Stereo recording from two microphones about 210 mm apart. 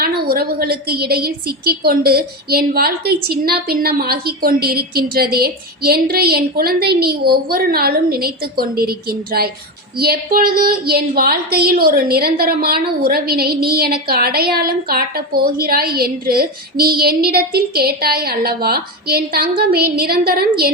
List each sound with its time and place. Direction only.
0.0 s a woman's voice: 45° right (ahead or behind)